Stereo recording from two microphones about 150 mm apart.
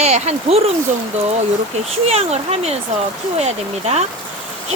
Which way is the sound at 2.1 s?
45° right (ahead or behind).